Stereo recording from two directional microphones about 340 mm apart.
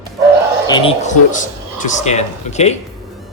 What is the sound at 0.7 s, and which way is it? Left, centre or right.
Speech, centre.